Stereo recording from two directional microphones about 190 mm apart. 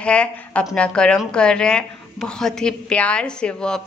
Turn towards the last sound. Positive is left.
turn(degrees=5)  # may be behind; listen again after turning